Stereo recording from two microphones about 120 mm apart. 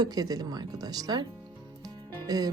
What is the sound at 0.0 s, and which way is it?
A woman's voice, 35° right (ahead or behind).